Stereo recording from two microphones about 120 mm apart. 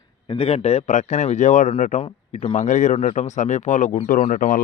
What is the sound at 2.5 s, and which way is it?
Speech, 90° left.